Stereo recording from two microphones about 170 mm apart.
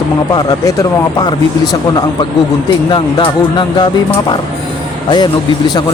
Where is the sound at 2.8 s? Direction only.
25° left (ahead or behind).